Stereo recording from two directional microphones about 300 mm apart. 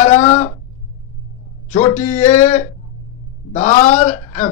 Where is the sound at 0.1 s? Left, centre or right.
Left.